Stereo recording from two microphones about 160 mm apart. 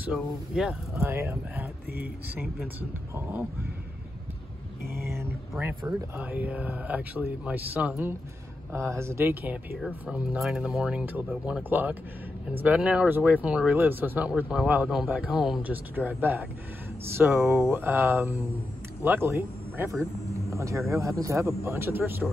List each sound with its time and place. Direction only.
0.1 s speech: 5° right (ahead or behind)
1.1 s speech: 15° right (ahead or behind)
3.2 s speech: 10° right (ahead or behind)
5.0 s speech: 15° right (ahead or behind)
6.2 s speech: 10° right (ahead or behind)